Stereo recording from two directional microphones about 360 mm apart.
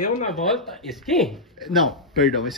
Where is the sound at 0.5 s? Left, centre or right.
Centre.